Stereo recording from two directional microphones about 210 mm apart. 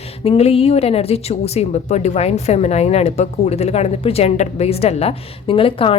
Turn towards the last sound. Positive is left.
turn(degrees=25)  # may be behind; listen again after turning